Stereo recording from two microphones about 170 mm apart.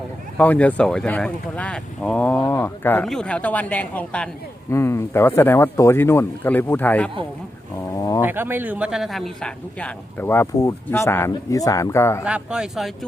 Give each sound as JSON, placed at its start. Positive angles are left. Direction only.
{"t": 0.3, "sound": "speech", "side_deg": 10}
{"t": 7.9, "sound": "a sound", "side_deg": 20}
{"t": 8.2, "sound": "speech", "side_deg": -10}
{"t": 12.2, "sound": "speech", "side_deg": -5}